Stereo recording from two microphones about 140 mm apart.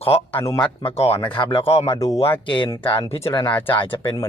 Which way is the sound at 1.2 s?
35° left (ahead or behind).